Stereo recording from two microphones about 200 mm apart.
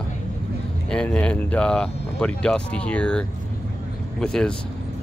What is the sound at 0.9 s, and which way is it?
Speech, 5° left (ahead or behind).